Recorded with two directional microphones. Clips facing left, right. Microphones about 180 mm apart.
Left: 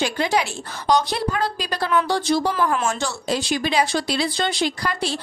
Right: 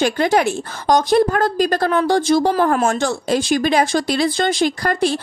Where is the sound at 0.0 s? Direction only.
50° right (ahead or behind).